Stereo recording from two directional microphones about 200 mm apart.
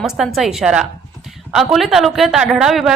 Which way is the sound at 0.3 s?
Centre (ahead or behind).